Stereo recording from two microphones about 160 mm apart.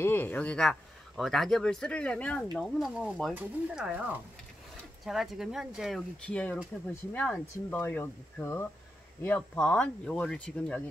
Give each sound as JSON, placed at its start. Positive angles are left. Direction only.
{"t": 0.0, "sound": "speech", "side_deg": 15}